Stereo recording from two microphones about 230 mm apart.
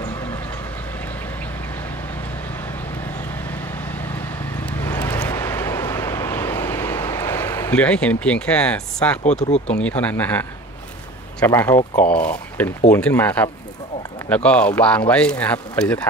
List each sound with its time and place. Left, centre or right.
4.6 s vehicle: centre
9.7 s speech: centre
11.9 s speech: left
12.2 s speech: centre